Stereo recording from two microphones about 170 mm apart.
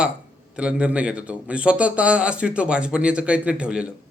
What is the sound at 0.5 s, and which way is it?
A man's voice, 5° right (ahead or behind).